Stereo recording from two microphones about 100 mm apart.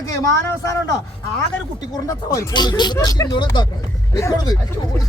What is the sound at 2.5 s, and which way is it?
Speech, 45° left (ahead or behind).